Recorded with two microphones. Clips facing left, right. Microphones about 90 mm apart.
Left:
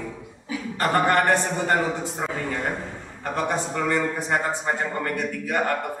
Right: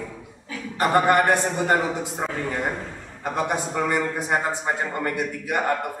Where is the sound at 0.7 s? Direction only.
15° right (ahead or behind).